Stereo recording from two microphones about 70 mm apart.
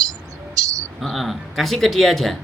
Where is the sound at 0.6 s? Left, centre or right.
Right.